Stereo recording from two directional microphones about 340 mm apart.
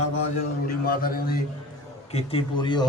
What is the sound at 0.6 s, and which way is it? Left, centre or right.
A man's voice, left.